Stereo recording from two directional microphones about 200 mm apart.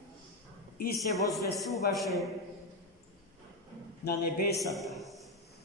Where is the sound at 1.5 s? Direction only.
Centre (ahead or behind).